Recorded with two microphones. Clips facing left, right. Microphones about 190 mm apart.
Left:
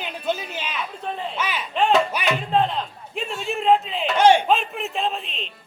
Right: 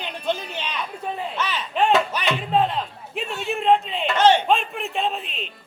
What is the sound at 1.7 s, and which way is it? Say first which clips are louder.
Music: even; centre (ahead or behind).